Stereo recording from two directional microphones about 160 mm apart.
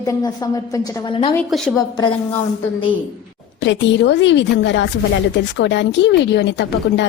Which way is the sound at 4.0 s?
90° left.